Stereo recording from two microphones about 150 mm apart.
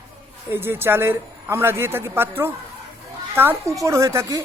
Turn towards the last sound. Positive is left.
turn(degrees=-20)  # may be behind; listen again after turning